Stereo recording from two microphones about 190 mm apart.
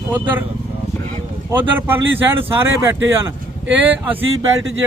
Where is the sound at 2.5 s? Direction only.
10° right (ahead or behind).